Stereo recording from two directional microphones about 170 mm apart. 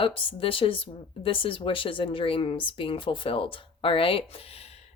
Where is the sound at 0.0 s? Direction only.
30° left (ahead or behind).